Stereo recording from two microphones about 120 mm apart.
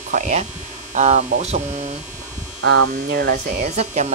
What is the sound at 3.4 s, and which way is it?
Speech, 90° right.